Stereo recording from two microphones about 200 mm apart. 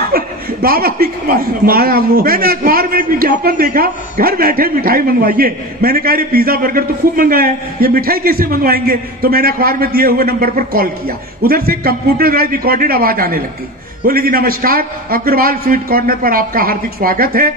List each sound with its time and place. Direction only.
0.1 s a man's voice: 50° right (ahead or behind)